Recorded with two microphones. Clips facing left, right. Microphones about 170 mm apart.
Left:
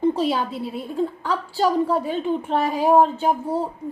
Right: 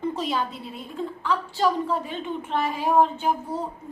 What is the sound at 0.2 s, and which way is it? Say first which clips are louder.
A woman's voice: left 5 dB; 35° left (ahead or behind).